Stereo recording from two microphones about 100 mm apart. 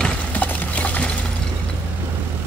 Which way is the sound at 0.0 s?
15° left (ahead or behind).